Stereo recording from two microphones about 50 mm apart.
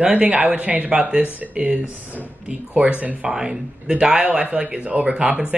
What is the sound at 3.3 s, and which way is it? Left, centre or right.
Speech, centre.